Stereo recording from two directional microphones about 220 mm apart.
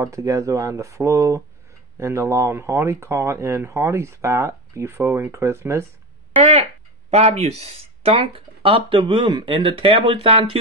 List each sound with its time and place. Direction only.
0.0 s speech: 15° right (ahead or behind)
7.1 s speech: 30° right (ahead or behind)